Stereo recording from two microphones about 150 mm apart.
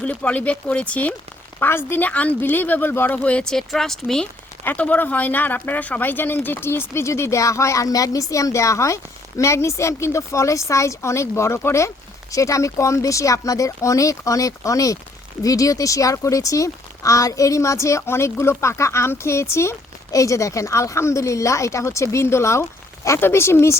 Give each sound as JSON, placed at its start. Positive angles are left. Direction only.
{"t": 0.0, "sound": "speech", "side_deg": 10}